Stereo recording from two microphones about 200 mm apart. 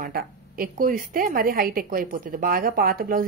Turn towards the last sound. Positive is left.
turn(degrees=-45)  # may be behind; listen again after turning